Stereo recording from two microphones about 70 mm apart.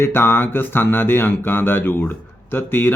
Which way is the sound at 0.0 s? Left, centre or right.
Left.